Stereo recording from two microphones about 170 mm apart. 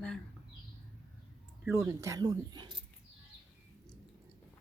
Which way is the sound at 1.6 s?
15° right (ahead or behind).